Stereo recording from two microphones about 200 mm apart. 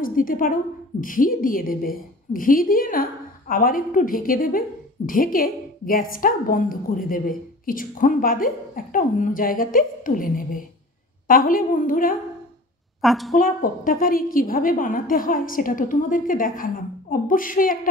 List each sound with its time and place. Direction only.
0.0 s a woman's voice: 45° left (ahead or behind)
13.0 s a woman's voice: centre (ahead or behind)
13.4 s a woman's voice: 45° left (ahead or behind)